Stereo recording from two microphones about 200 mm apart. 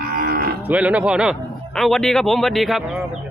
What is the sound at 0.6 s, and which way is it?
Speech, 5° right (ahead or behind).